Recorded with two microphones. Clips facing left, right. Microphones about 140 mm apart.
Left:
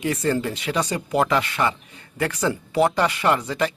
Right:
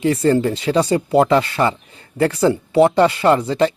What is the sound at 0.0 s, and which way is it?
Speech, 30° right (ahead or behind).